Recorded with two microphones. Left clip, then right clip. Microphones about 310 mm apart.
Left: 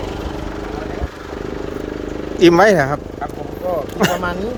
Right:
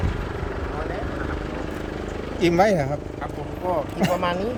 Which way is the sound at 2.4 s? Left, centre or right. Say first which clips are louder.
Left 8 dB; centre.